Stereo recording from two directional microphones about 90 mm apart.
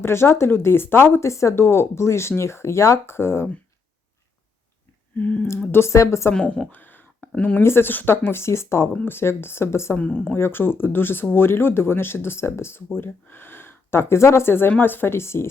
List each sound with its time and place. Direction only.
0.0 s speech: 30° left (ahead or behind)
5.1 s speech: 15° left (ahead or behind)
5.7 s a woman's voice: 30° left (ahead or behind)
6.3 s speech: 10° left (ahead or behind); by 8.9 s 30° left (ahead or behind)
8.9 s speech: 20° left (ahead or behind)
10.0 s speech: 15° left (ahead or behind)
10.3 s speech: 25° left (ahead or behind)